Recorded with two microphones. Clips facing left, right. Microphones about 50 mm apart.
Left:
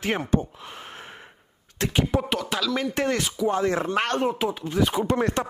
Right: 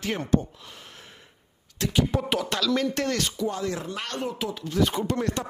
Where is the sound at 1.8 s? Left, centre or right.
Left.